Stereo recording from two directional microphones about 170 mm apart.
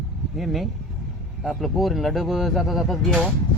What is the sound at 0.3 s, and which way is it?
Speech, centre (ahead or behind).